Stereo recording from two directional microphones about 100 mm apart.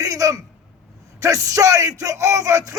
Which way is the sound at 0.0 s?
35° right (ahead or behind).